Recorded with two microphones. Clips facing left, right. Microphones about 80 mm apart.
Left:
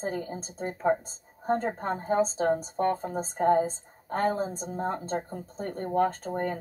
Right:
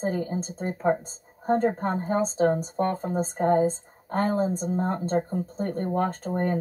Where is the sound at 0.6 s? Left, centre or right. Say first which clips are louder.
Right 1 dB; centre.